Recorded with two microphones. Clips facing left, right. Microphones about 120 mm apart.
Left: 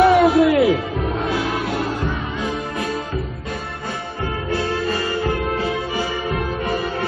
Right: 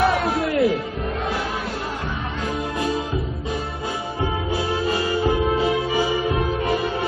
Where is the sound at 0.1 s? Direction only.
75° left (ahead or behind).